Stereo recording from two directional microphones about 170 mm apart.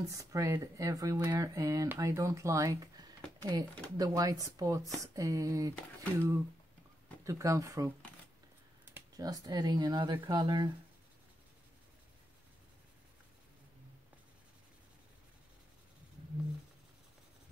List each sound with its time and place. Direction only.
0.1 s speech: 20° right (ahead or behind)